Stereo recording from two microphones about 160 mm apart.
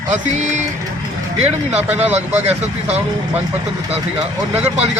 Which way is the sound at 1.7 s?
10° right (ahead or behind).